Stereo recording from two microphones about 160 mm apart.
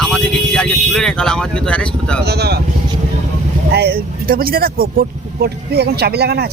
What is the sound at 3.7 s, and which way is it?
Speech, 85° right.